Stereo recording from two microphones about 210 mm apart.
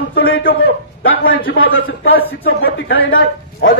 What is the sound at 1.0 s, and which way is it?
Speech, 70° left (ahead or behind).